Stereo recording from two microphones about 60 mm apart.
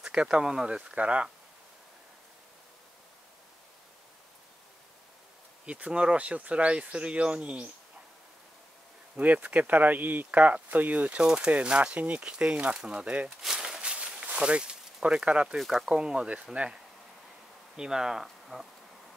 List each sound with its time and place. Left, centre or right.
0.0 s speech: centre
5.7 s speech: centre
9.1 s speech: right
11.2 s speech: centre
13.4 s a sound: centre
15.5 s speech: centre
15.9 s speech: centre